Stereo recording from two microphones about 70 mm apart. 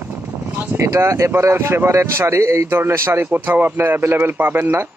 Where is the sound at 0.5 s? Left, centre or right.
Right.